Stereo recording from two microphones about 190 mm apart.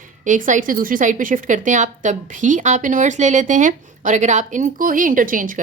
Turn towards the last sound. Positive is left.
turn(degrees=-45)  # may be behind; listen again after turning